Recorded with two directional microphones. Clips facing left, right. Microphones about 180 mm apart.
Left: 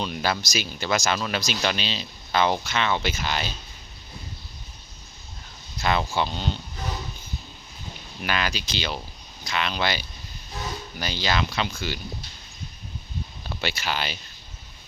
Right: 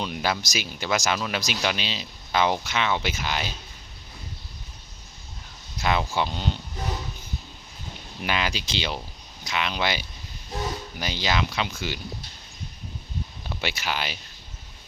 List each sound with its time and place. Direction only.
0.0 s speech: 15° right (ahead or behind)
5.8 s speech: 10° right (ahead or behind)
8.2 s speech: 20° right (ahead or behind)
13.6 s speech: 15° right (ahead or behind)